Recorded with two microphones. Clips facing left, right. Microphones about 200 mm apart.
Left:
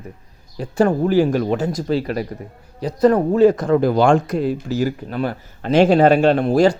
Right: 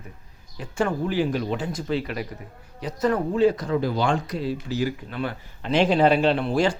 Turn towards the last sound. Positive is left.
turn(degrees=40)  # may be behind; listen again after turning